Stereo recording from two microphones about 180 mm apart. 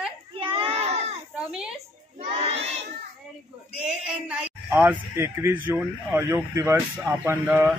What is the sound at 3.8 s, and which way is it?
A man's voice, 5° right (ahead or behind).